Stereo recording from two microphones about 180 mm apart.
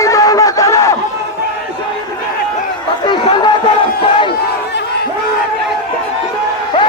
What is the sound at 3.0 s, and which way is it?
Chatter, 25° left (ahead or behind).